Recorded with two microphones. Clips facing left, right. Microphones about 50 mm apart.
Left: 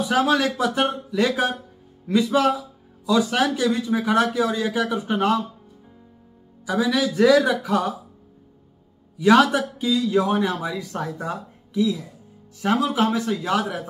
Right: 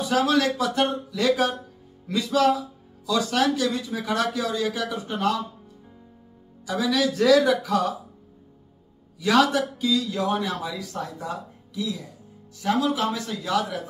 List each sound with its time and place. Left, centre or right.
0.3 s speech: left
6.6 s speech: left
9.2 s a man's voice: left